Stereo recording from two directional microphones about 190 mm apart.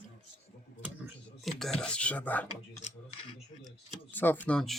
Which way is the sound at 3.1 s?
30° left (ahead or behind).